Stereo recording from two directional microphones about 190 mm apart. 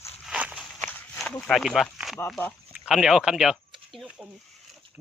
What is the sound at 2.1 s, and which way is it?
Speech, 10° left (ahead or behind).